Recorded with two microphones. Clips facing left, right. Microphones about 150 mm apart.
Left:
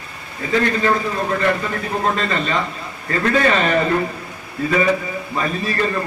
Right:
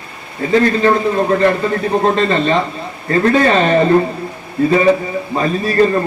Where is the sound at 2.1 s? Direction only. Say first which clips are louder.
Right 7 dB; 30° right (ahead or behind).